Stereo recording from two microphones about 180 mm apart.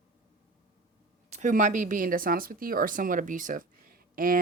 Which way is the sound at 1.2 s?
40° right (ahead or behind).